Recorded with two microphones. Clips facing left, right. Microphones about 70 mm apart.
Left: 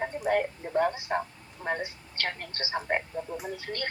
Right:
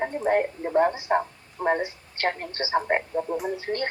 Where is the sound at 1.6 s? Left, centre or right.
Right.